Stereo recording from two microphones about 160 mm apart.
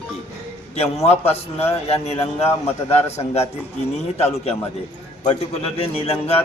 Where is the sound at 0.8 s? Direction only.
40° left (ahead or behind).